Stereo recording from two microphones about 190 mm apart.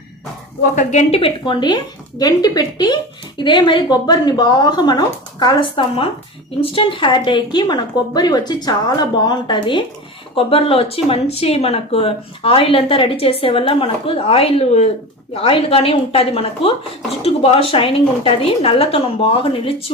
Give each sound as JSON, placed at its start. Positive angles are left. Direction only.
{"t": 0.6, "sound": "a woman's voice", "side_deg": 40}